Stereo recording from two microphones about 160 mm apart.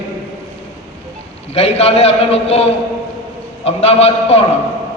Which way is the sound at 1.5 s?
40° left (ahead or behind).